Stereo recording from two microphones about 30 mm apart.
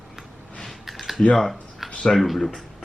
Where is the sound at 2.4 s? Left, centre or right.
Centre.